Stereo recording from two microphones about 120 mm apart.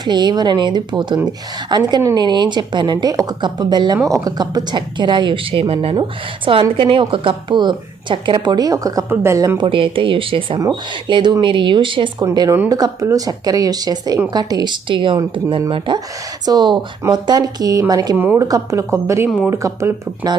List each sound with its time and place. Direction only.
0.0 s a woman's voice: 40° right (ahead or behind)
9.6 s speech: 50° right (ahead or behind)
12.2 s a woman's voice: 30° right (ahead or behind)